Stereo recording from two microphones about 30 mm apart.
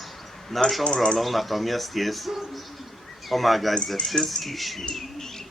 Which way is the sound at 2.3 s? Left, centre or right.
Centre.